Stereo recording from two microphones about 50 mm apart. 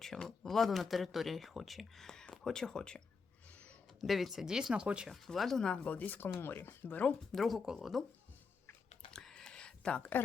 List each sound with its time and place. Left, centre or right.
0.0 s speech: centre
4.0 s speech: centre
4.7 s speech: right
5.1 s speech: centre
5.6 s speech: left
6.8 s speech: left
7.3 s speech: centre
9.3 s a sound: centre